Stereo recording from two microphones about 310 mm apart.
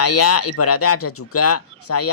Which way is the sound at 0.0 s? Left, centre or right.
Left.